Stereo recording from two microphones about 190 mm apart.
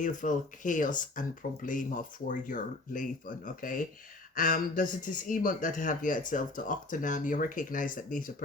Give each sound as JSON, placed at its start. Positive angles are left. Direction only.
{"t": 0.0, "sound": "speech", "side_deg": 40}